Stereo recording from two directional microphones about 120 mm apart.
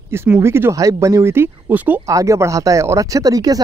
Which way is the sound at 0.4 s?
20° right (ahead or behind).